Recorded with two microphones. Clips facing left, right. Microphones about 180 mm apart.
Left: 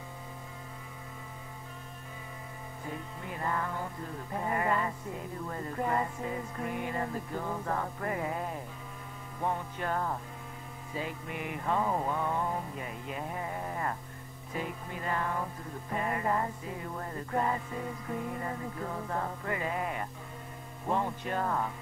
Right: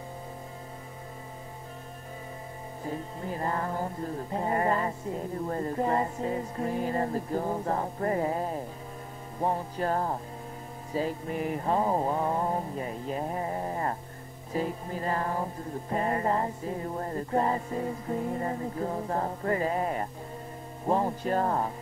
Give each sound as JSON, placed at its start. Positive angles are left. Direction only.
{"t": 2.8, "sound": "music", "side_deg": -35}